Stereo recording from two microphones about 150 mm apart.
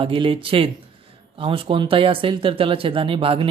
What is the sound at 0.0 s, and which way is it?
Speech, 35° right (ahead or behind).